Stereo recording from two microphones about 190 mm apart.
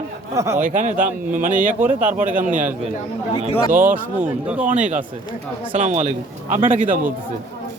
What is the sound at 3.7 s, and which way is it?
Speech, 45° right (ahead or behind).